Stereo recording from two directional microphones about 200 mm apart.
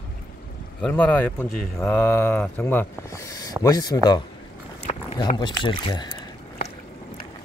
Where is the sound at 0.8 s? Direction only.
5° left (ahead or behind).